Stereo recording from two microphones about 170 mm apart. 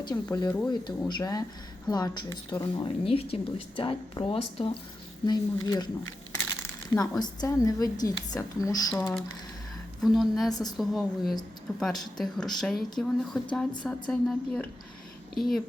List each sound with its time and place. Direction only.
0.0 s a woman's voice: 25° left (ahead or behind)
7.0 s a woman's voice: 20° left (ahead or behind)
8.9 s speech: 5° left (ahead or behind)
10.5 s a woman's voice: 25° left (ahead or behind)
10.8 s speech: centre (ahead or behind)